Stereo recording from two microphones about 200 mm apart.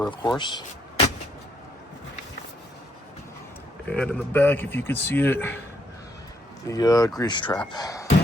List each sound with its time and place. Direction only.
0.0 s speech: 20° left (ahead or behind)
3.8 s speech: 5° left (ahead or behind)
6.7 s speech: 15° left (ahead or behind)